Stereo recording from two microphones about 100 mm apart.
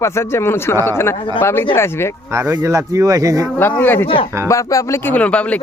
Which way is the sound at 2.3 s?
25° right (ahead or behind).